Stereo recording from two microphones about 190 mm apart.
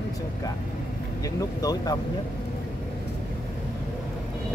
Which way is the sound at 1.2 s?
20° left (ahead or behind).